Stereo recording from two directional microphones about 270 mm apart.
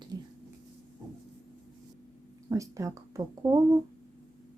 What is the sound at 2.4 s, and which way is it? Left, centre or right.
Speech, centre.